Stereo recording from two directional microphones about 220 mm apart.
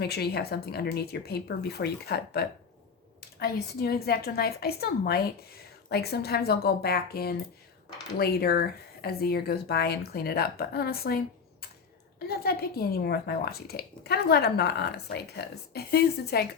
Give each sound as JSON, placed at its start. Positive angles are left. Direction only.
{"t": 0.0, "sound": "speech", "side_deg": 45}
{"t": 12.3, "sound": "speech", "side_deg": 45}